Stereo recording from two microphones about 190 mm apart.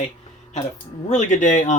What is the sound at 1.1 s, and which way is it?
Speech, 40° left (ahead or behind).